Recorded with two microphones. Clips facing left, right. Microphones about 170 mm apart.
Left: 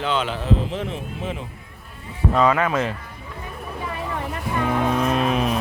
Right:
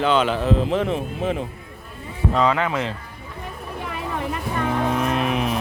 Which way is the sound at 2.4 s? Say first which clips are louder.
Left 2 dB; 20° right (ahead or behind).